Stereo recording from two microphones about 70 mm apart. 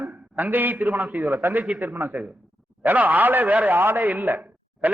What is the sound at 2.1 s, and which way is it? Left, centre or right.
A man's voice, centre.